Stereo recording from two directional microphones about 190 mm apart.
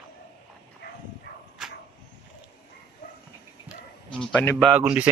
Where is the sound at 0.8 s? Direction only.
65° left (ahead or behind).